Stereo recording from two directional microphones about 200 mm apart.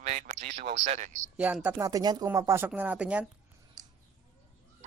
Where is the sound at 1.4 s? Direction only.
5° right (ahead or behind).